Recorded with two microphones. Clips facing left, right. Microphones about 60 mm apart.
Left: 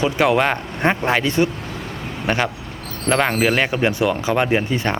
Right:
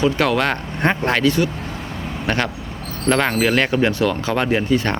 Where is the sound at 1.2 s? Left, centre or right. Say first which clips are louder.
Right 1 dB; left.